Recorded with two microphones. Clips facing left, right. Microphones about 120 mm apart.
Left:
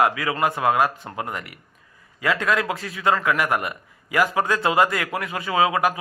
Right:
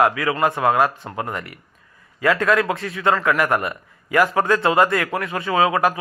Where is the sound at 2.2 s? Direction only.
20° left (ahead or behind).